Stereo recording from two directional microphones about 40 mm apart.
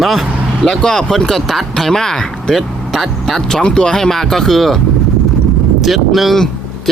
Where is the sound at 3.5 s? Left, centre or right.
Centre.